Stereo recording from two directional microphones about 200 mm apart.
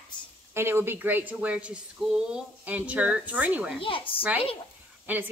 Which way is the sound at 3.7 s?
25° left (ahead or behind).